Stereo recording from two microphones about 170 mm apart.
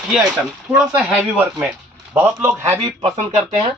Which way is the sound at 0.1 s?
5° right (ahead or behind).